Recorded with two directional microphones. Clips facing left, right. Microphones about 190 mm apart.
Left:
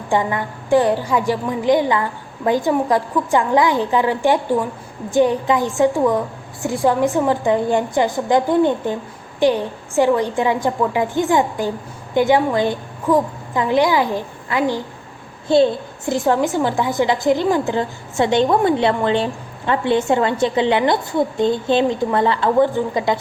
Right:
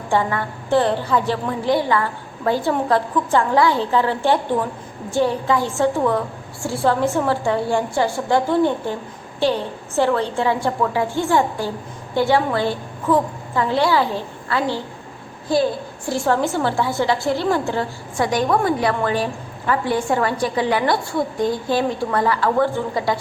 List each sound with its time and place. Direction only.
0.1 s a woman's voice: 15° left (ahead or behind)